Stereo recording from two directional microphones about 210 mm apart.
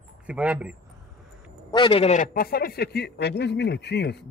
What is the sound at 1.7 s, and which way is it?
A man's voice, 25° left (ahead or behind).